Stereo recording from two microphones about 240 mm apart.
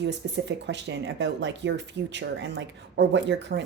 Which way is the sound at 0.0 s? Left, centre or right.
Right.